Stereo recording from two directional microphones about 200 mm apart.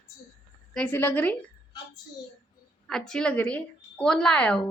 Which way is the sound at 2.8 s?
5° left (ahead or behind).